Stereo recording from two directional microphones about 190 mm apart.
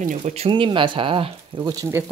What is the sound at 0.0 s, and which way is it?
Speech, 40° right (ahead or behind).